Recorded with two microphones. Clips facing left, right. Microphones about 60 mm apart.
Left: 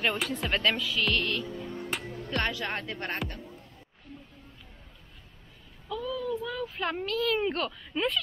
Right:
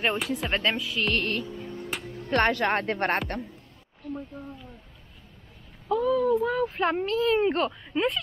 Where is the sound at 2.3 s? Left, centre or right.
Right.